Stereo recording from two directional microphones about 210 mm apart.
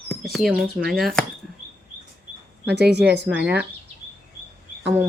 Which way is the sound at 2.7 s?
50° right (ahead or behind).